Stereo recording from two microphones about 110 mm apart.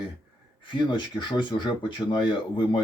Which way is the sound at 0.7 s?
45° left (ahead or behind).